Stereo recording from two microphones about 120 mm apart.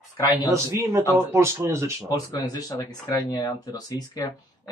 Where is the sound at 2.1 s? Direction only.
30° left (ahead or behind).